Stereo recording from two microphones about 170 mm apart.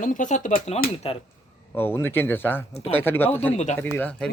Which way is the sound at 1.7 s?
10° left (ahead or behind).